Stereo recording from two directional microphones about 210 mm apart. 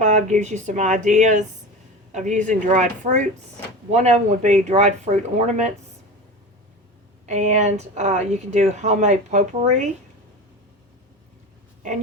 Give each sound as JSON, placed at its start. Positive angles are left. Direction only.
{"t": 0.0, "sound": "speech", "side_deg": -35}
{"t": 7.3, "sound": "speech", "side_deg": -35}